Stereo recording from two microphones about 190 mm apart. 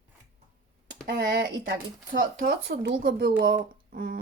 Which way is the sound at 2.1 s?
50° right (ahead or behind).